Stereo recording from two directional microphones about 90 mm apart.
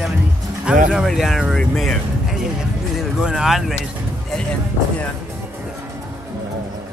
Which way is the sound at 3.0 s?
5° right (ahead or behind).